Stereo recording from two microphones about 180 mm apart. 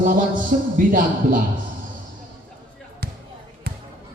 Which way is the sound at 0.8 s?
50° right (ahead or behind).